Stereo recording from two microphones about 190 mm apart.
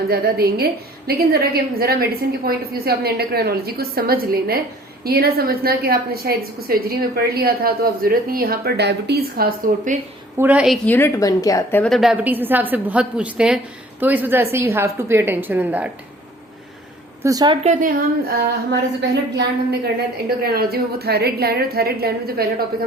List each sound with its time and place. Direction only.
0.1 s a woman's voice: 55° right (ahead or behind)
10.3 s a woman's voice: 10° right (ahead or behind)
10.8 s a woman's voice: 10° left (ahead or behind); by 15.9 s 10° right (ahead or behind)
17.2 s a woman's voice: 20° right (ahead or behind)
17.6 s a woman's voice: 40° right (ahead or behind)